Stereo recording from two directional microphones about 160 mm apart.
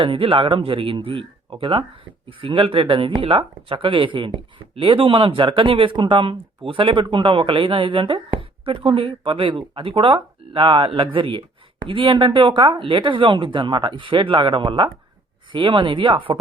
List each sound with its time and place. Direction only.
0.0 s speech: 35° right (ahead or behind)